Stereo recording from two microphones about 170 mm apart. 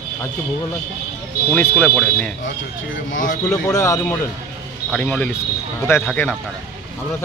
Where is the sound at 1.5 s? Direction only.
10° left (ahead or behind).